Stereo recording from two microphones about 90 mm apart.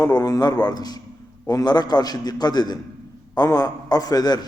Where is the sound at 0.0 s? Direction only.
40° left (ahead or behind).